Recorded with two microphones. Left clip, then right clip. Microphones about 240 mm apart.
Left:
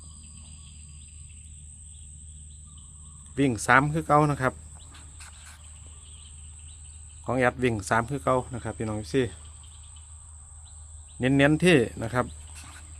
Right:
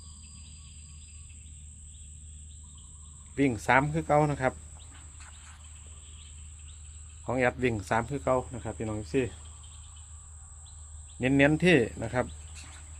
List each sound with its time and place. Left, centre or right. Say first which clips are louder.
3.3 s speech: left 3 dB; left
5.1 s cricket: left 4 dB; centre
7.3 s speech: left 3 dB; left
11.2 s speech: left 2 dB; left